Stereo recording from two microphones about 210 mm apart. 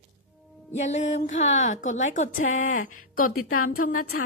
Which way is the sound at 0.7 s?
35° left (ahead or behind).